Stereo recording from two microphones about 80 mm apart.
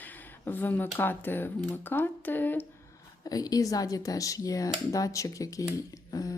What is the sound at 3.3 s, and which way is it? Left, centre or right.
Speech, left.